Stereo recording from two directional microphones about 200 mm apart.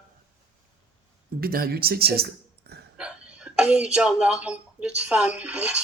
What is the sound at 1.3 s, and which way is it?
Speech, 50° right (ahead or behind).